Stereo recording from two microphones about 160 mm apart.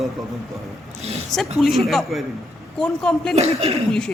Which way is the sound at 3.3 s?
40° right (ahead or behind).